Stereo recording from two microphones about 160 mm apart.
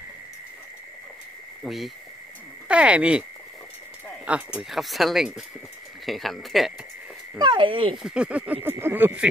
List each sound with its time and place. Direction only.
1.6 s speech: centre (ahead or behind)
4.3 s speech: 5° right (ahead or behind)
7.3 s speech: 30° right (ahead or behind)
7.9 s speech: 5° right (ahead or behind)